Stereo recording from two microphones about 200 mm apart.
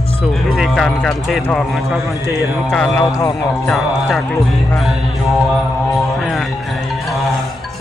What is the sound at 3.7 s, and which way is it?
Speech, centre (ahead or behind).